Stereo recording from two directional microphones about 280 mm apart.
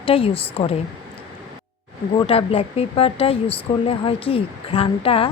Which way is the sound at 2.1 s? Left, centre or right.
Centre.